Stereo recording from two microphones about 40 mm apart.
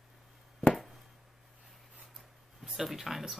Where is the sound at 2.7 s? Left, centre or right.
Centre.